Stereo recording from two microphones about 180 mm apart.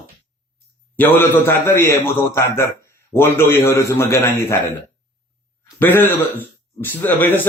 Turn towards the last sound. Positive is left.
turn(degrees=10)  # may be behind; listen again after turning